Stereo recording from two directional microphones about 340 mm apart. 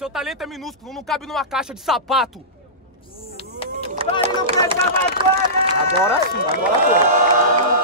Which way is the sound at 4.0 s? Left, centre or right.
Centre.